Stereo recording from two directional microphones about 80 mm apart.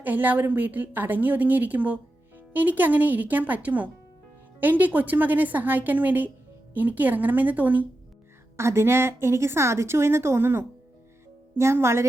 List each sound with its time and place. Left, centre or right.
0.0 s a woman's voice: right
8.5 s speech: right